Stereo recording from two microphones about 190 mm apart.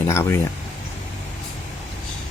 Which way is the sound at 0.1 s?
15° left (ahead or behind).